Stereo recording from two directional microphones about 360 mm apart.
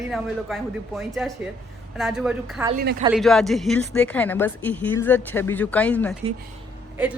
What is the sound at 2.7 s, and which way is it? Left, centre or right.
Speech, right.